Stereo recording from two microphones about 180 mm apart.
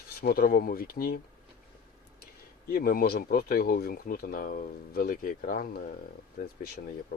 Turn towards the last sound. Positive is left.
turn(degrees=55)  # may be behind; listen again after turning